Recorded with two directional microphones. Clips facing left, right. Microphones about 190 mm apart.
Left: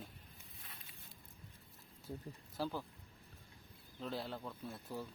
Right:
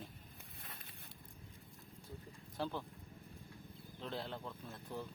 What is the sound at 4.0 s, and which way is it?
A man's voice, 5° left (ahead or behind).